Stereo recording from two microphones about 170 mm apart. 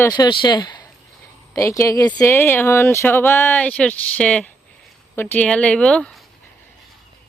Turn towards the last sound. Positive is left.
turn(degrees=5)  # may be behind; listen again after turning